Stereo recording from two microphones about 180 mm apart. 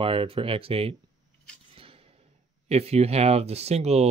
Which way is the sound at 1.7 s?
30° right (ahead or behind).